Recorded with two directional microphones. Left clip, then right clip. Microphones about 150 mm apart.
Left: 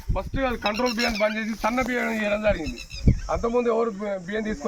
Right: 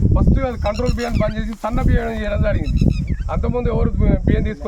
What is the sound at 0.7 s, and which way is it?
Speech, 30° right (ahead or behind).